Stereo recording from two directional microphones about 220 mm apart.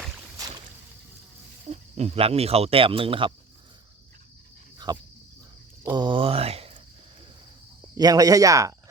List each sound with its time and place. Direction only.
1.7 s speech: 30° right (ahead or behind)
4.9 s speech: 20° right (ahead or behind)
7.9 s speech: 15° right (ahead or behind)